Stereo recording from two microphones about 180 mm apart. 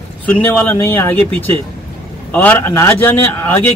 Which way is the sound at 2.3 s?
10° left (ahead or behind).